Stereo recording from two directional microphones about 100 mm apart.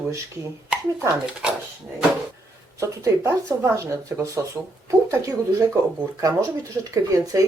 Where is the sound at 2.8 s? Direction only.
30° right (ahead or behind).